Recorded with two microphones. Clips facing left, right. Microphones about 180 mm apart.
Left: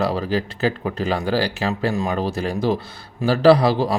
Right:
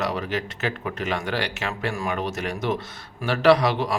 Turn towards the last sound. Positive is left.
turn(degrees=30)  # may be behind; listen again after turning